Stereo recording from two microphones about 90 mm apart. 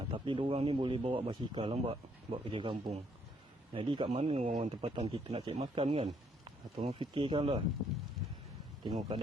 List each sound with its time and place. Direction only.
0.1 s speech: 80° right
6.4 s speech: 70° right (ahead or behind)
8.8 s speech: 50° right (ahead or behind)